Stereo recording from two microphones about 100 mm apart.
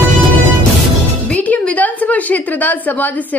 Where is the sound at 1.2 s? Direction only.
15° left (ahead or behind).